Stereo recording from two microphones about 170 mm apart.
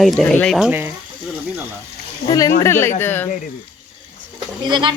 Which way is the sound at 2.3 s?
20° left (ahead or behind).